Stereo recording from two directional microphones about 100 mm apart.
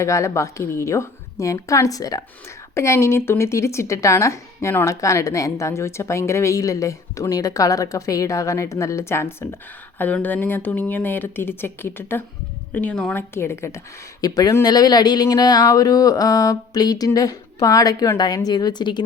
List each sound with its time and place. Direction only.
0.0 s a woman's voice: 30° left (ahead or behind); by 13.1 s 10° left (ahead or behind)
13.1 s speech: 25° left (ahead or behind)
14.2 s a woman's voice: 40° left (ahead or behind)